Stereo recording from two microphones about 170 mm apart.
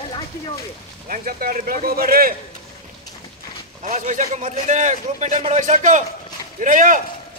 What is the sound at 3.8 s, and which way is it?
A man's voice, 45° right (ahead or behind).